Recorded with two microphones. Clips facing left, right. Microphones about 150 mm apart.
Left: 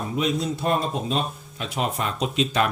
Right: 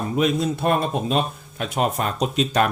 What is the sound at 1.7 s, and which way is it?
Speech, 45° right (ahead or behind).